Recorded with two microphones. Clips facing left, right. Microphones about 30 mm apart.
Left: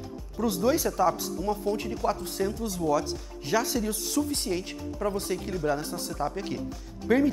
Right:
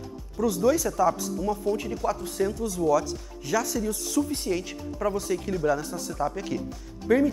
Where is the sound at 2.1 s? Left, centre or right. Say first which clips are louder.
Right 2 dB; left.